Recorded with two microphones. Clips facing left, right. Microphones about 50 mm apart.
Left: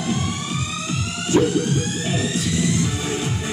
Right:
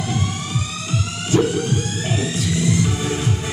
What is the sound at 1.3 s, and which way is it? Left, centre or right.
Music, centre.